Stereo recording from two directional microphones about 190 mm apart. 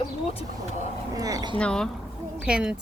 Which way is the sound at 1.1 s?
20° right (ahead or behind).